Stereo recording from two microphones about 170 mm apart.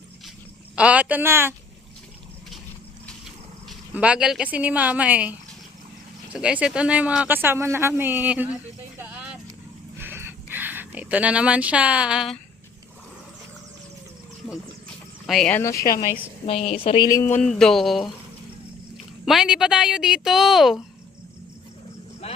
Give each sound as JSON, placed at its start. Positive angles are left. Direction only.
{"t": 0.8, "sound": "speech", "side_deg": -10}
{"t": 3.7, "sound": "speech", "side_deg": -5}
{"t": 10.0, "sound": "a sound", "side_deg": -15}
{"t": 15.3, "sound": "speech", "side_deg": 0}
{"t": 15.5, "sound": "speech", "side_deg": 15}
{"t": 16.0, "sound": "speech", "side_deg": -10}
{"t": 16.5, "sound": "a woman's voice", "side_deg": 35}
{"t": 17.1, "sound": "speech", "side_deg": 15}
{"t": 19.2, "sound": "speech", "side_deg": 0}
{"t": 22.2, "sound": "vehicle", "side_deg": 40}